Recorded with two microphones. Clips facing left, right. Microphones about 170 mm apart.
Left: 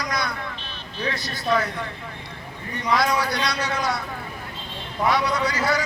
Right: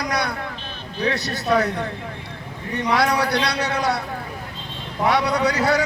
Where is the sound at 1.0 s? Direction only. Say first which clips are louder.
Right 4 dB; 70° right (ahead or behind).